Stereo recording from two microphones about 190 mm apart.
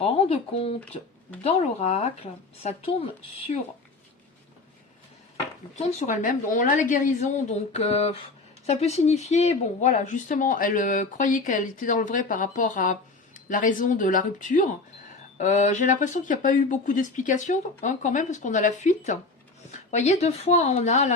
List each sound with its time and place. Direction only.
0.0 s speech: 30° left (ahead or behind)
5.7 s speech: 40° left (ahead or behind)